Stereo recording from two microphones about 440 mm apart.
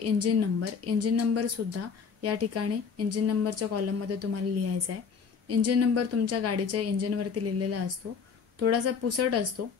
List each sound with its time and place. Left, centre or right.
0.0 s speech: right